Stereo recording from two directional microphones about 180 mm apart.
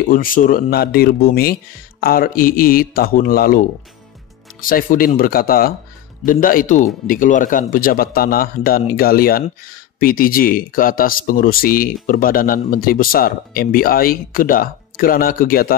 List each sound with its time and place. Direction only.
0.1 s speech: 50° left (ahead or behind)